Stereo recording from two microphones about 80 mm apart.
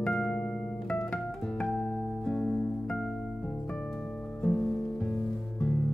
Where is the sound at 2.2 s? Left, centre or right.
Centre.